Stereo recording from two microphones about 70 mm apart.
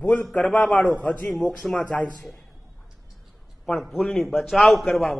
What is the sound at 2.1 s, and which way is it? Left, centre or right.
Speech, centre.